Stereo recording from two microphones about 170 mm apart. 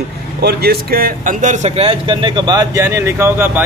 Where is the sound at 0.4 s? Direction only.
70° right (ahead or behind).